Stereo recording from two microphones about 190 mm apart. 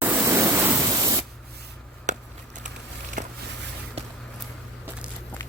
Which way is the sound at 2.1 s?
40° right (ahead or behind).